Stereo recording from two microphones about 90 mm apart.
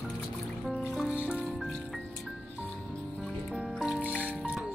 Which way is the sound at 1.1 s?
15° right (ahead or behind).